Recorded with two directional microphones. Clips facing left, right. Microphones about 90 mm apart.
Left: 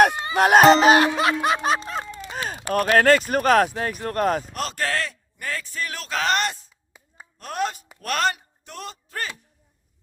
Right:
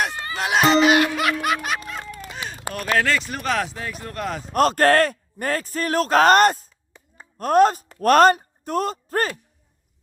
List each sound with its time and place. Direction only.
0.1 s music: 20° left (ahead or behind)
0.3 s music: 45° left (ahead or behind); by 2.2 s 30° left (ahead or behind)
2.3 s a sound: 40° left (ahead or behind)
2.7 s speech: 45° left (ahead or behind)
4.5 s speech: 50° right (ahead or behind)
6.9 s a sound: 10° left (ahead or behind)
7.3 s speech: 45° right (ahead or behind)